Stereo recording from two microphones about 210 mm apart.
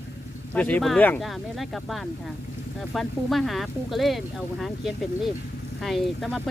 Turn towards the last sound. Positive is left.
turn(degrees=0)  # may be behind; listen again after turning